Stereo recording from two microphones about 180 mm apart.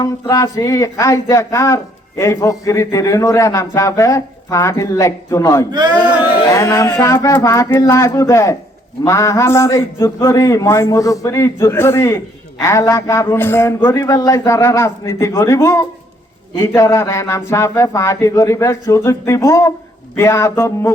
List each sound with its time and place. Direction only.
0.0 s a man's voice: 15° left (ahead or behind)